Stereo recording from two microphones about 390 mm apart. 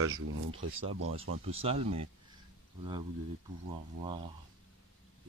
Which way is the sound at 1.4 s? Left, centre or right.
Centre.